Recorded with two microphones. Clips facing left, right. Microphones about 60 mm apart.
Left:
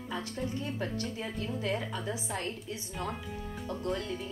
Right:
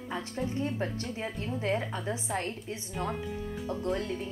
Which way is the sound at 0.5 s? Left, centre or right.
Right.